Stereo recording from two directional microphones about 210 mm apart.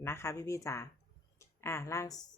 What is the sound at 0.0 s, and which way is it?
Speech, 10° left (ahead or behind).